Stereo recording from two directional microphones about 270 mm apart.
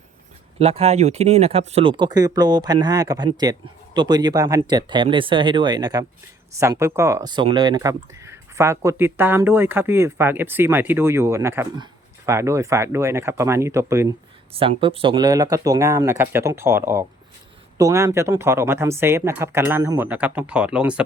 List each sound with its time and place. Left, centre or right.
0.6 s speech: right; by 21.0 s centre